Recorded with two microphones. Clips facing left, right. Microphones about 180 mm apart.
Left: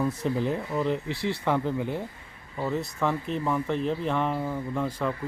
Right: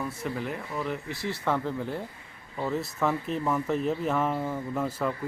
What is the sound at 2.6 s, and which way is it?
Speech, centre (ahead or behind).